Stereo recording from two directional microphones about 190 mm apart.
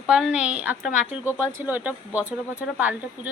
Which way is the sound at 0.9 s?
40° left (ahead or behind).